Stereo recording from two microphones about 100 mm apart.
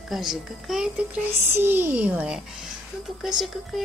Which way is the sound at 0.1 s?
5° right (ahead or behind).